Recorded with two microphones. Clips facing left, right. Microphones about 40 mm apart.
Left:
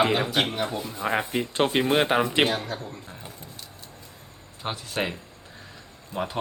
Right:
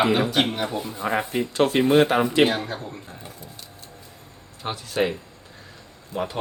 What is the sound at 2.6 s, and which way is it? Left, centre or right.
Speech, centre.